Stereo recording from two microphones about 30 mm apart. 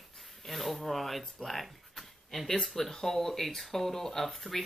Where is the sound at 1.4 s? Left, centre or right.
Centre.